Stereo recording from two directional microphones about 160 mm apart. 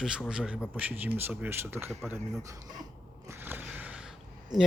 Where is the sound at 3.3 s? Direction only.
15° right (ahead or behind).